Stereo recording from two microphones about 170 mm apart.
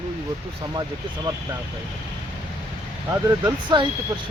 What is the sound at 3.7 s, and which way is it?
Speech, 25° right (ahead or behind).